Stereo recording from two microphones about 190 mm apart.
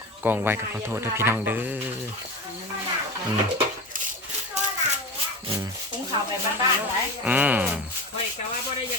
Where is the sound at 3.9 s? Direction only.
45° right (ahead or behind).